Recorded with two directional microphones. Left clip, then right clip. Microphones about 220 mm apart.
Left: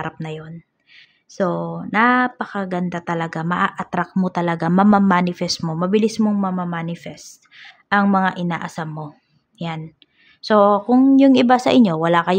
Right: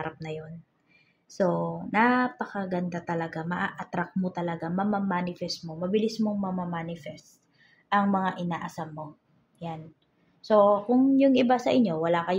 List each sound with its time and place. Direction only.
0.0 s speech: 25° left (ahead or behind)
10.4 s speech: 35° left (ahead or behind)